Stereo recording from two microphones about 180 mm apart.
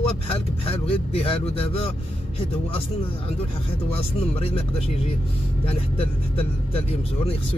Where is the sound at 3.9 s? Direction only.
35° left (ahead or behind).